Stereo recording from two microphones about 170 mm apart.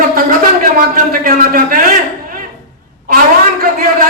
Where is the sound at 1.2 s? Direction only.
55° right (ahead or behind).